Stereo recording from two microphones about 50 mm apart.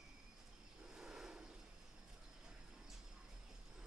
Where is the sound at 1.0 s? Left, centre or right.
Centre.